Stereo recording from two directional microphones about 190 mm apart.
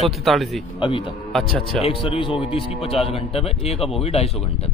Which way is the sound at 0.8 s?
25° left (ahead or behind).